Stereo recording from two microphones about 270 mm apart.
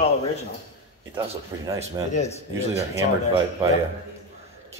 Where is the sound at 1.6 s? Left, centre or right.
Centre.